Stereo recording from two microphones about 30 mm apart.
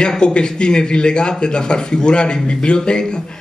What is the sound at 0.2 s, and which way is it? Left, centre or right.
A man's voice, left.